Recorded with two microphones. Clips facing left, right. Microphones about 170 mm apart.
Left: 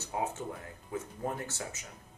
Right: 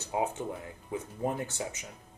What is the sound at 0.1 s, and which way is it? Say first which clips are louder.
Speech: right 4 dB; 20° right (ahead or behind).